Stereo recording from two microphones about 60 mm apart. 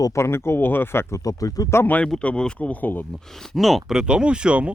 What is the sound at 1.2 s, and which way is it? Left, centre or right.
Speech, left.